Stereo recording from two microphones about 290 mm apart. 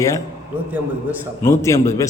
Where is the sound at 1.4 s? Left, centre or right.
Centre.